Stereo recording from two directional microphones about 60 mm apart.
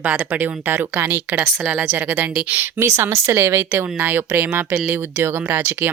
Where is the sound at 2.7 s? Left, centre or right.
Right.